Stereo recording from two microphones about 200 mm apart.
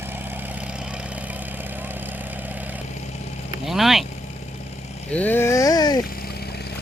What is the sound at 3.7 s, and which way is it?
Speech, centre (ahead or behind).